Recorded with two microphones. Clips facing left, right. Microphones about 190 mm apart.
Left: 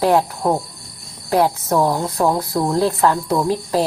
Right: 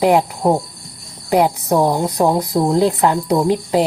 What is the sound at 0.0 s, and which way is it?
Speech, 15° right (ahead or behind).